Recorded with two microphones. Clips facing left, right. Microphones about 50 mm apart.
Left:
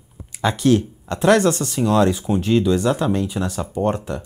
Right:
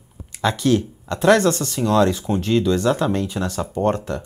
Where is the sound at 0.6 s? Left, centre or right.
Left.